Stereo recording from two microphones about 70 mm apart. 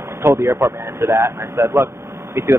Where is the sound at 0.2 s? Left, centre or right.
Right.